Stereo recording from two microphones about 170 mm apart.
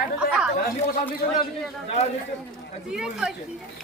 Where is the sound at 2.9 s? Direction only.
5° right (ahead or behind).